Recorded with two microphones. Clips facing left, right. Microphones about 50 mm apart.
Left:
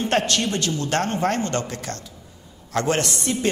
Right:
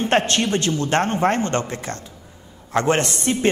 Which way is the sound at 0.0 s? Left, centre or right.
Right.